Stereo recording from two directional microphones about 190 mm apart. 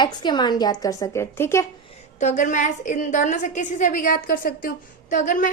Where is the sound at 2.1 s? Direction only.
40° left (ahead or behind).